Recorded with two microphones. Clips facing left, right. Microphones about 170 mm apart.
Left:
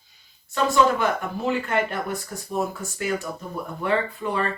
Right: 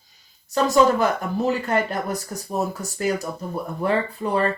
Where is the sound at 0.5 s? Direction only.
40° right (ahead or behind).